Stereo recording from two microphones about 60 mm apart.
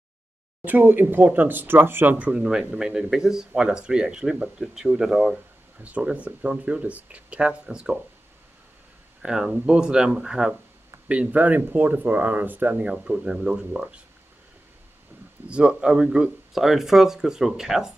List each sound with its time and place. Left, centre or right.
0.7 s speech: right
2.3 s speech: centre
9.2 s speech: centre
11.1 s speech: right
13.0 s speech: centre
15.4 s speech: centre